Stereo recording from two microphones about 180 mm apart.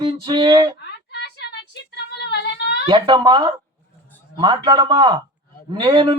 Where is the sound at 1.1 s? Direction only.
65° left (ahead or behind).